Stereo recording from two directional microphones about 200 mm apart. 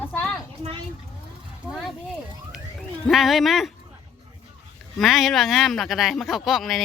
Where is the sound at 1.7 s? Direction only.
Centre (ahead or behind).